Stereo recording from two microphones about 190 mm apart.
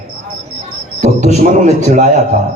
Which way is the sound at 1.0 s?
40° right (ahead or behind).